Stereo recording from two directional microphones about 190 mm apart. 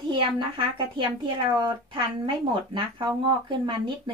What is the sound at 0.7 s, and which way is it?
Speech, 25° right (ahead or behind).